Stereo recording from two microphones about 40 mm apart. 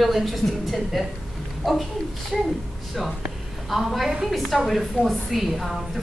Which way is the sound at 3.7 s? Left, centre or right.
Centre.